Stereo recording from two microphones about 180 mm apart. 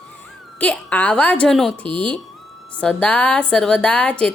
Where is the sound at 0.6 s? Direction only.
5° left (ahead or behind).